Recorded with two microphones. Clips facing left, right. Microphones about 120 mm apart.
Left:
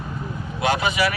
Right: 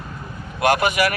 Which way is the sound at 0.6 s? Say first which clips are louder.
Right 4 dB; 55° right (ahead or behind).